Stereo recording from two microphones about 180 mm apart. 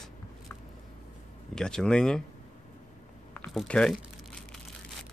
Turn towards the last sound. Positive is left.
turn(degrees=5)  # may be behind; listen again after turning